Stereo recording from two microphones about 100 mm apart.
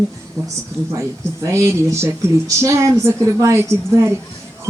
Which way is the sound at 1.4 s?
30° right (ahead or behind).